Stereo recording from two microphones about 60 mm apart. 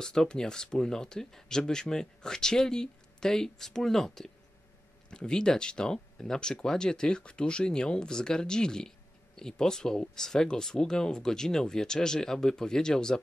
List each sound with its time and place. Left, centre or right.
0.0 s speech: centre